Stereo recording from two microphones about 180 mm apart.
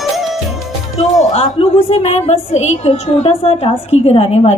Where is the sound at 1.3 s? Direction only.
30° left (ahead or behind).